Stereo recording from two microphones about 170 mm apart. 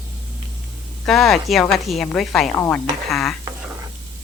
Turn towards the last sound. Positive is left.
turn(degrees=0)  # may be behind; listen again after turning